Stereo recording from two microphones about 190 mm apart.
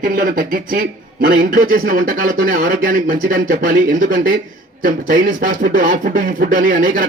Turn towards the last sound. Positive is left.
turn(degrees=-45)  # may be behind; listen again after turning